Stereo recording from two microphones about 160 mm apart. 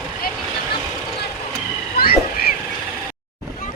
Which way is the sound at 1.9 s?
70° left (ahead or behind).